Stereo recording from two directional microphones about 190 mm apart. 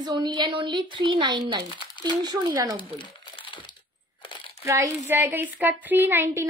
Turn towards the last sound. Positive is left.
turn(degrees=-10)  # may be behind; listen again after turning